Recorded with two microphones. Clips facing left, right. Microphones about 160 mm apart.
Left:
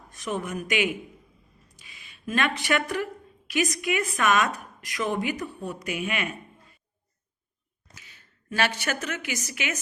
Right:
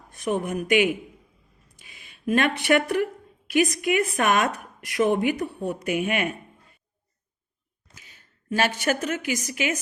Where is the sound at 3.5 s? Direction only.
50° right (ahead or behind).